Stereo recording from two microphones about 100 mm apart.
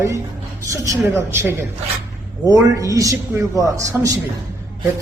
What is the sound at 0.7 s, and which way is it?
A man's voice, 25° right (ahead or behind).